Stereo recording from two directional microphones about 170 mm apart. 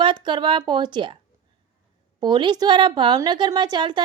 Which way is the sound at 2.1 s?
25° right (ahead or behind).